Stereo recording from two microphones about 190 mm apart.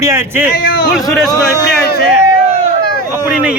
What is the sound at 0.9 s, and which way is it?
Speech, centre (ahead or behind).